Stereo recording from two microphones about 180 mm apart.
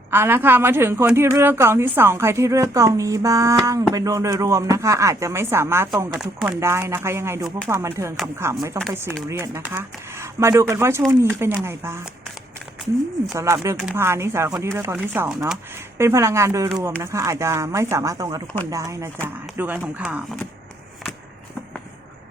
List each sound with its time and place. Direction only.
0.1 s a woman's voice: 10° right (ahead or behind)
13.3 s a woman's voice: 15° right (ahead or behind)